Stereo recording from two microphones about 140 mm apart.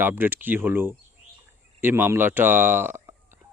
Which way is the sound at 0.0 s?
15° right (ahead or behind).